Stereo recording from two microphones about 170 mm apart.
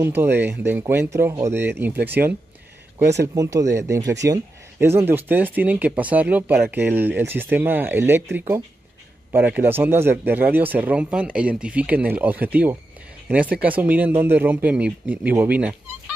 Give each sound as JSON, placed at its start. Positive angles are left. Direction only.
{"t": 0.0, "sound": "speech", "side_deg": -15}
{"t": 3.3, "sound": "speech", "side_deg": -20}